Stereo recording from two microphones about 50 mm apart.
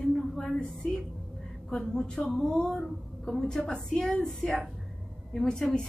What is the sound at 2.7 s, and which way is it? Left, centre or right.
A woman's voice, centre.